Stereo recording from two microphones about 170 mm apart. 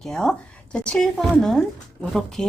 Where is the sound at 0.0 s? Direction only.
5° left (ahead or behind).